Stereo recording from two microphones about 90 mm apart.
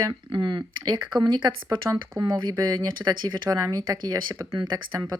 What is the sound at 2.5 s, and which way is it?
Speech, 45° right (ahead or behind).